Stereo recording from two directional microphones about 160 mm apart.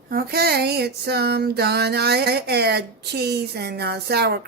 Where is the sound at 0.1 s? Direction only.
70° right (ahead or behind).